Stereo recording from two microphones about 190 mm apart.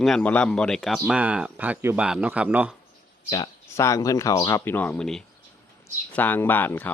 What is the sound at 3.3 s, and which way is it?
Speech, 20° left (ahead or behind).